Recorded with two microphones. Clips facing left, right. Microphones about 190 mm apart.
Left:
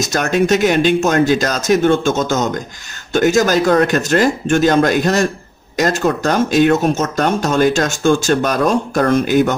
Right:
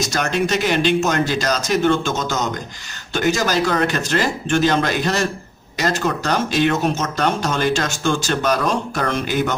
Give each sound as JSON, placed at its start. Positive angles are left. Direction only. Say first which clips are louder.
{"t": 0.1, "sound": "speech", "louder": "left 8 dB", "side_deg": 45}